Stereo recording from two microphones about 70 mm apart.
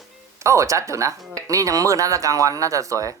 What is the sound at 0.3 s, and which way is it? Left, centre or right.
Speech, right.